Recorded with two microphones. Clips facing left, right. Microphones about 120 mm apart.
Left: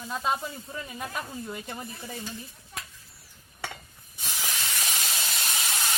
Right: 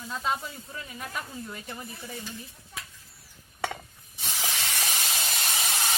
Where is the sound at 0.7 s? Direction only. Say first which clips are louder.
Left 1 dB; 25° left (ahead or behind).